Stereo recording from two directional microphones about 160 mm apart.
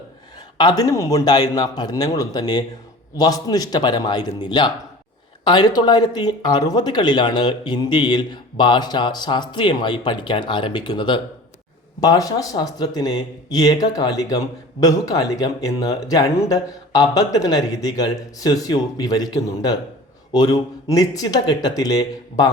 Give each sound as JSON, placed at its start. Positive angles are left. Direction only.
{"t": 0.6, "sound": "speech", "side_deg": 25}